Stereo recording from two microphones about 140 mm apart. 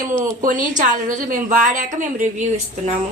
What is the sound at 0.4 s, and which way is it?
A woman's voice, 70° right (ahead or behind).